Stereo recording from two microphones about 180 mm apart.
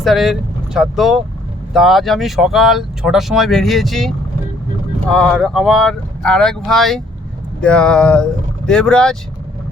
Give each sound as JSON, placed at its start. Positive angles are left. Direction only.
{"t": 0.0, "sound": "speech", "side_deg": 0}
{"t": 5.1, "sound": "speech", "side_deg": 5}